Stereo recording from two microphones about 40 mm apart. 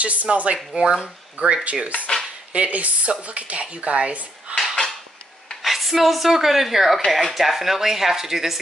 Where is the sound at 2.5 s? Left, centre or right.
Right.